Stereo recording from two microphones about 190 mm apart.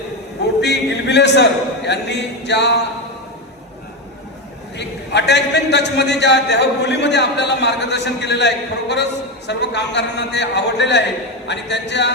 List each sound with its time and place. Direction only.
0.6 s a man's voice: 60° left (ahead or behind)
4.8 s a man's voice: 65° left (ahead or behind)